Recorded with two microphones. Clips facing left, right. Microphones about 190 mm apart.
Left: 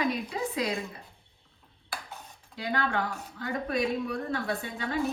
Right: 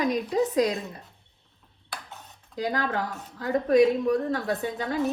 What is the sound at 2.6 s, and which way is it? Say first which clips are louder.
Speech: right 2 dB; 40° right (ahead or behind).